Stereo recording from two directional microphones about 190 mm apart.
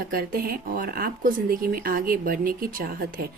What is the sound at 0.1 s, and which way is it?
A woman's voice, 50° right (ahead or behind).